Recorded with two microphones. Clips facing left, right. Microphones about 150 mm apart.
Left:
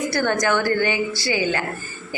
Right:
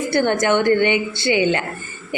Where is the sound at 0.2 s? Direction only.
20° right (ahead or behind).